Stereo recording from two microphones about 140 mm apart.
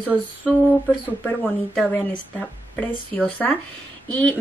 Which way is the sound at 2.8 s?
10° left (ahead or behind).